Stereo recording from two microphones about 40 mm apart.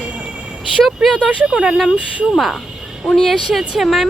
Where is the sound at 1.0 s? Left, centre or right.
Centre.